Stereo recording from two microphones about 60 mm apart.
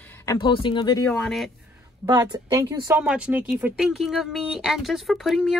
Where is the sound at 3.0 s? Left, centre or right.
Centre.